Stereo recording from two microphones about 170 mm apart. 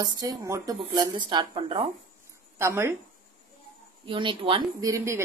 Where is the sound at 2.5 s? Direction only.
15° right (ahead or behind).